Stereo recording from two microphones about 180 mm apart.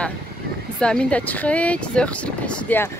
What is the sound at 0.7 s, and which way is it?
Speech, 5° left (ahead or behind).